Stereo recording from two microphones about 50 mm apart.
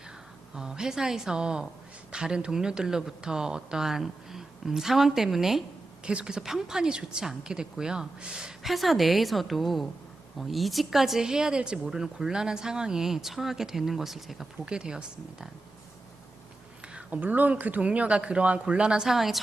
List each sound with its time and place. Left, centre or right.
0.5 s speech: centre
6.1 s speech: centre
8.7 s a woman's voice: centre
14.6 s speech: centre
17.1 s speech: right; by 19.4 s centre